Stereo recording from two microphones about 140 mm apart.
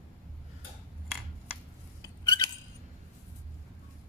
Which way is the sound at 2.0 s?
30° left (ahead or behind).